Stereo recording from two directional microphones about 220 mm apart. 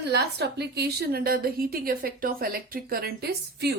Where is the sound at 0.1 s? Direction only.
50° right (ahead or behind).